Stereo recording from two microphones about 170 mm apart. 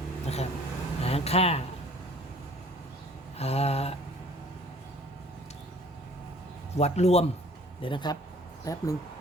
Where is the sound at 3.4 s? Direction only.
35° left (ahead or behind).